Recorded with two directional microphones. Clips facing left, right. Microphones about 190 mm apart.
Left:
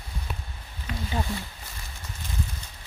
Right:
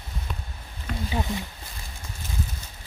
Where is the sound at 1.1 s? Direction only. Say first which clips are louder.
Right 2 dB; 20° right (ahead or behind).